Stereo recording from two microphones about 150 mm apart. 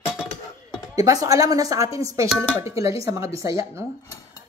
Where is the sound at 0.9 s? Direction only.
25° right (ahead or behind).